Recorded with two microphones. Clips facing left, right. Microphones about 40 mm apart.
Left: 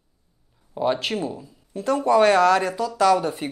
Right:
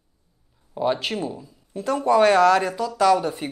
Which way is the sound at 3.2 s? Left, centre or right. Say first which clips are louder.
Even; centre.